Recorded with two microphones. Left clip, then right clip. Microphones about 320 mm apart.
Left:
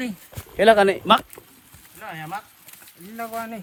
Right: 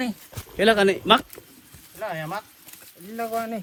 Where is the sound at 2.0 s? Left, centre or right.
Centre.